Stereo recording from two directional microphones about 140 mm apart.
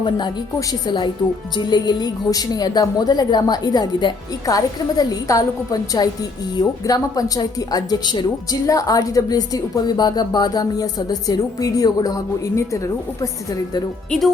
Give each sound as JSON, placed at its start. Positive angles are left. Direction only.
{"t": 0.7, "sound": "a woman's voice", "side_deg": 30}